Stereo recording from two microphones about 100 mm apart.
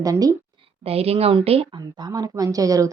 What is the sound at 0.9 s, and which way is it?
Speech, 90° right.